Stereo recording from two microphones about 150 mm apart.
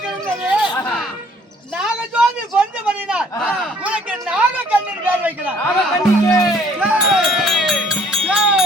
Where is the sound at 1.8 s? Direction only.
5° right (ahead or behind).